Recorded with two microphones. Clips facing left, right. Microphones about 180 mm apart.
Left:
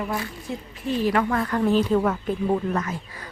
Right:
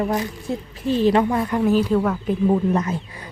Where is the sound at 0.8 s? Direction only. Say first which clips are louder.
Right 5 dB; 30° right (ahead or behind).